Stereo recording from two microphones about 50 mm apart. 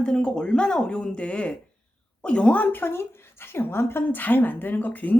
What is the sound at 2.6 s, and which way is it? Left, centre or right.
A woman's voice, left.